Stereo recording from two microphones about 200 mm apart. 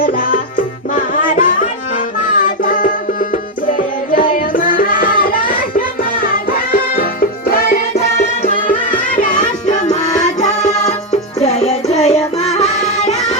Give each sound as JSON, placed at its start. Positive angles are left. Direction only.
{"t": 0.0, "sound": "music", "side_deg": 45}